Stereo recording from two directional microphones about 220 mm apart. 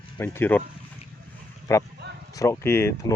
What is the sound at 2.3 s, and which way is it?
Speech, 15° left (ahead or behind).